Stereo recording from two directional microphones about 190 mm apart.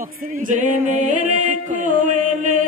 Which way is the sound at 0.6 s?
40° right (ahead or behind).